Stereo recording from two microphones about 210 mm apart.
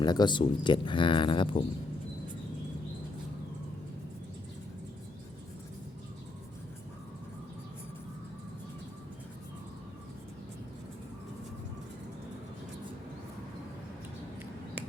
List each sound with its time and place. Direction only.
0.0 s speech: 20° left (ahead or behind)